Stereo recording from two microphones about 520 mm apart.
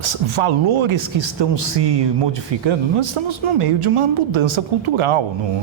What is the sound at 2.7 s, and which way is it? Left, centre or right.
Speech, right.